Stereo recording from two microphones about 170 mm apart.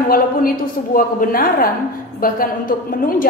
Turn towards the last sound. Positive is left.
turn(degrees=55)  # may be behind; listen again after turning